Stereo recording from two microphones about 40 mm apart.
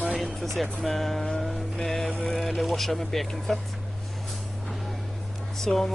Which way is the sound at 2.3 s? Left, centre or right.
Centre.